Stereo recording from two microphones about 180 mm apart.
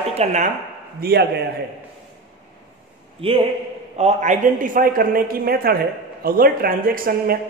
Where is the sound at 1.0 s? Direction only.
65° right (ahead or behind).